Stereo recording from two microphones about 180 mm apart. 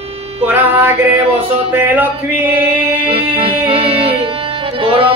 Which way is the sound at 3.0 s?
30° right (ahead or behind).